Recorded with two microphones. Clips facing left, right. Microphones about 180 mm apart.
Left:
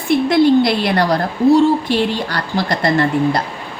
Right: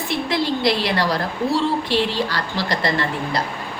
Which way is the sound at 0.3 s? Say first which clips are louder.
Left 8 dB; 55° left (ahead or behind).